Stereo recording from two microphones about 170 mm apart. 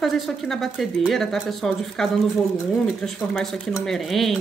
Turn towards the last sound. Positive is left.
turn(degrees=0)  # may be behind; listen again after turning